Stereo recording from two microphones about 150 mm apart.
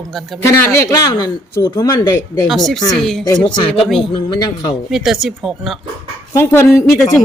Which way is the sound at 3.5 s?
35° left (ahead or behind).